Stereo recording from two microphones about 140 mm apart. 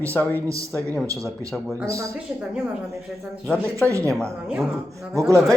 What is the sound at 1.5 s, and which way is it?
Speech, 5° left (ahead or behind).